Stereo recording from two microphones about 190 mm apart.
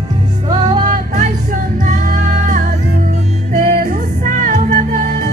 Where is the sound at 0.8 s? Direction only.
40° right (ahead or behind).